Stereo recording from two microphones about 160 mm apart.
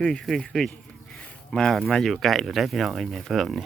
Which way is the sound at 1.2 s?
5° left (ahead or behind).